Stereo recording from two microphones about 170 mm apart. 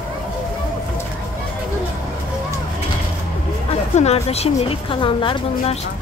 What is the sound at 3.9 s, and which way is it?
A woman's voice, 40° left (ahead or behind).